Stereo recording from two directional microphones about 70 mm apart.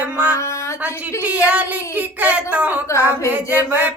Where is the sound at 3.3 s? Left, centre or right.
Right.